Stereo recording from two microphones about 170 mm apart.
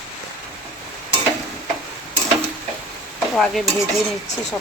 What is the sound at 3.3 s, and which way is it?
Speech, centre (ahead or behind).